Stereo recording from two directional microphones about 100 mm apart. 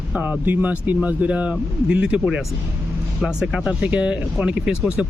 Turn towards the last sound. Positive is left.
turn(degrees=-10)  # may be behind; listen again after turning